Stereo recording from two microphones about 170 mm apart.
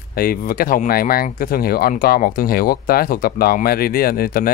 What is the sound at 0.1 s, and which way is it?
Speech, 60° left (ahead or behind).